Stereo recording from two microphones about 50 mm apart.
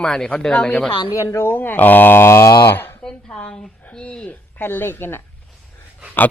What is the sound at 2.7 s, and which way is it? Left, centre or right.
Speech, left.